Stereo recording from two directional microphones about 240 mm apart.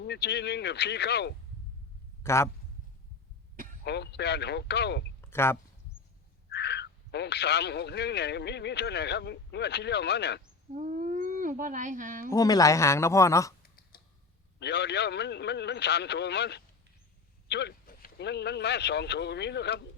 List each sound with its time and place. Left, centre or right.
0.0 s speech: left
2.2 s a man's voice: centre
3.8 s speech: left
5.2 s a sound: centre
6.5 s speech: left
10.8 s speech: right
12.3 s speech: centre
13.9 s a sound: left
14.6 s speech: left